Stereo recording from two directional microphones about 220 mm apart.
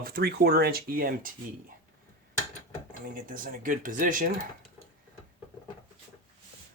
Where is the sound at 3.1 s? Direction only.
40° right (ahead or behind).